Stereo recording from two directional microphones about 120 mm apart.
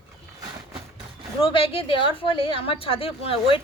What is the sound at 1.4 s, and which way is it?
A woman's voice, 50° left (ahead or behind).